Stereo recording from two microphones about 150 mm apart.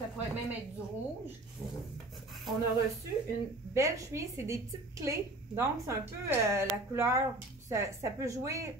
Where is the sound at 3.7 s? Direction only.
20° right (ahead or behind).